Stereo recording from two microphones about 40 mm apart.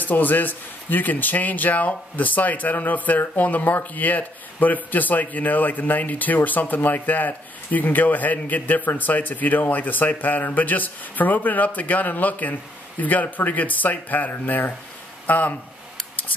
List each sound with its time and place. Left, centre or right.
0.0 s speech: left